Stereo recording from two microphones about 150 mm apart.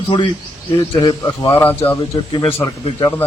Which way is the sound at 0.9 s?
30° left (ahead or behind).